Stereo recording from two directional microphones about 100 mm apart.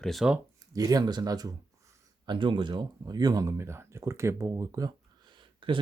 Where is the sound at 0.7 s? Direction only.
35° right (ahead or behind).